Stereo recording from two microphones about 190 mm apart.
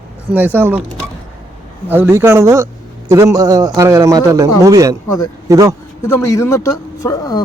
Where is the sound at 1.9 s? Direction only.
10° right (ahead or behind).